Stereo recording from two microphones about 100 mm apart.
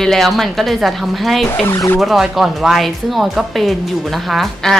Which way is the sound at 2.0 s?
5° right (ahead or behind).